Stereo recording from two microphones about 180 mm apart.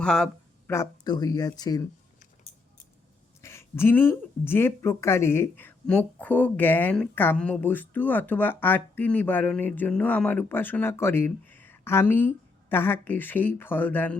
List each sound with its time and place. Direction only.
0.0 s speech: 5° left (ahead or behind)
0.7 s speech: 20° left (ahead or behind)
3.4 s speech: 15° left (ahead or behind)